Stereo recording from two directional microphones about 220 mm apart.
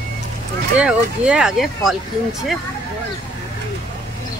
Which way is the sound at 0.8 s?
5° right (ahead or behind).